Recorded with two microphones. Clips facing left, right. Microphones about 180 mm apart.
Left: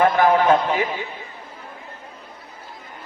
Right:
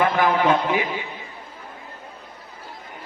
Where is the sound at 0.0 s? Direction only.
45° left (ahead or behind).